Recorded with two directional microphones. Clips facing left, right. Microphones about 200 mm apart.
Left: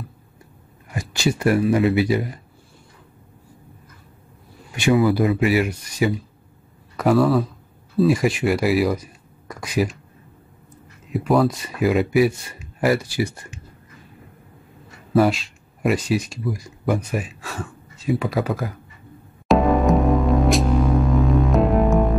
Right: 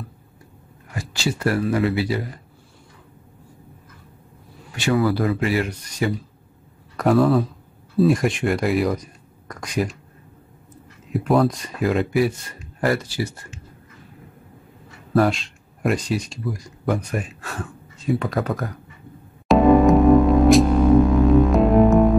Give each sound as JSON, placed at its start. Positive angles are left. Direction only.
{"t": 0.9, "sound": "speech", "side_deg": 15}
{"t": 5.0, "sound": "a man's voice", "side_deg": 15}
{"t": 11.1, "sound": "speech", "side_deg": 0}
{"t": 15.1, "sound": "speech", "side_deg": 5}
{"t": 19.4, "sound": "music", "side_deg": 0}